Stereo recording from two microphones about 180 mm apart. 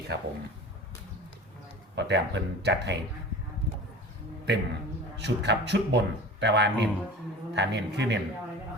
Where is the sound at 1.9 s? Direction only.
70° right (ahead or behind).